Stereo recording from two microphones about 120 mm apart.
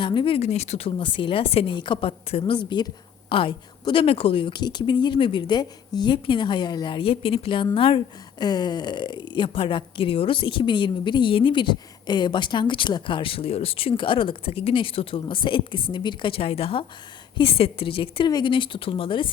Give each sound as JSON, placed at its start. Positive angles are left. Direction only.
{"t": 0.0, "sound": "a woman's voice", "side_deg": 45}
{"t": 2.6, "sound": "a woman's voice", "side_deg": 40}